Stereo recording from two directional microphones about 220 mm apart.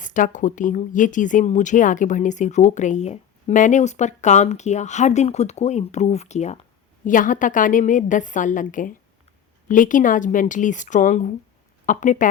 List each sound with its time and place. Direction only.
0.0 s speech: 35° left (ahead or behind)